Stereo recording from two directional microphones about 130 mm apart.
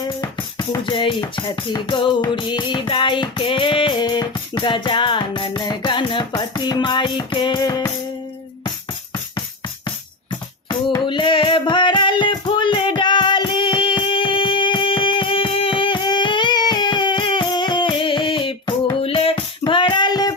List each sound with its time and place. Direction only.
0.1 s music: 30° left (ahead or behind)
10.7 s music: 35° left (ahead or behind)
18.9 s music: 45° left (ahead or behind)